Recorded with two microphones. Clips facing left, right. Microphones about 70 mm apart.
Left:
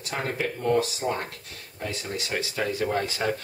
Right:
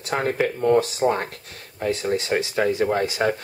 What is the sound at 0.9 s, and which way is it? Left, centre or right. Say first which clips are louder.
Speech: right 7 dB; right.